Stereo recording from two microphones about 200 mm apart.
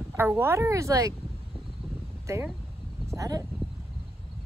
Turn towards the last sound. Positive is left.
turn(degrees=-15)  # may be behind; listen again after turning